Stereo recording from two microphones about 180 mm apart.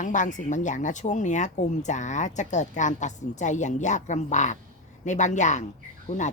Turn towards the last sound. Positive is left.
turn(degrees=40)  # may be behind; listen again after turning